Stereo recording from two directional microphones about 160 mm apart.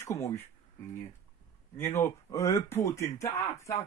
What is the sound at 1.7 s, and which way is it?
Speech, 15° left (ahead or behind).